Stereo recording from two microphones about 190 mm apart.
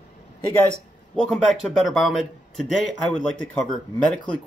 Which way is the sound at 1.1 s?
5° left (ahead or behind).